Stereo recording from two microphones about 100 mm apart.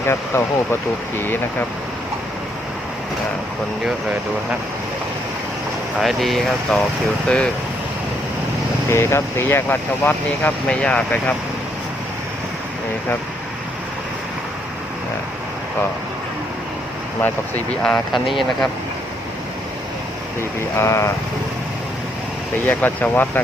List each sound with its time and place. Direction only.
0.0 s speech: 25° left (ahead or behind)
6.0 s speech: centre (ahead or behind)
8.9 s speech: 25° left (ahead or behind)
17.2 s speech: 15° left (ahead or behind)
20.6 s speech: 30° left (ahead or behind)
22.6 s speech: 15° left (ahead or behind)